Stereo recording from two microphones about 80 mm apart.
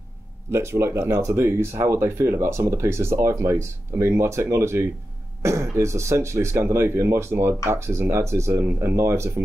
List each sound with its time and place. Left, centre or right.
0.5 s speech: right